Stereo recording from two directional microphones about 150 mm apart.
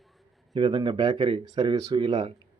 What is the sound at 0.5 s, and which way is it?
A man's voice, 30° right (ahead or behind).